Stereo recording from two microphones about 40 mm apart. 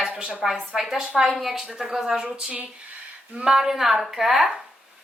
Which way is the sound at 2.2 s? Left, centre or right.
Right.